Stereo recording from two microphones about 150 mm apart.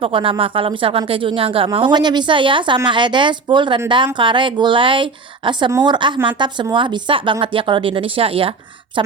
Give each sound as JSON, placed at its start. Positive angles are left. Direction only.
{"t": 0.0, "sound": "speech", "side_deg": -35}